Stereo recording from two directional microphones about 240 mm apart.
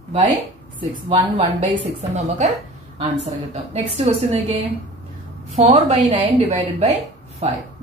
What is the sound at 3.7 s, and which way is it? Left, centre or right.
A woman's voice, right.